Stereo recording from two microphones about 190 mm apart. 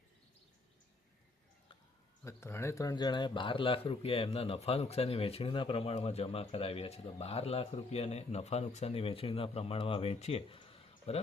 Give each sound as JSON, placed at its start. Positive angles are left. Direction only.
{"t": 2.2, "sound": "speech", "side_deg": 15}